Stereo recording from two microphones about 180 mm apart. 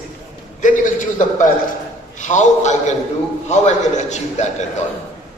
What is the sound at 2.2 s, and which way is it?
A man's voice, 40° left (ahead or behind).